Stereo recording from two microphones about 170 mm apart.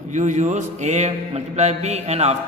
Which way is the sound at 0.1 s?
45° right (ahead or behind).